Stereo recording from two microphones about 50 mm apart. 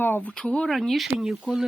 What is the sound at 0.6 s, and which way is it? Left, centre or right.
Speech, centre.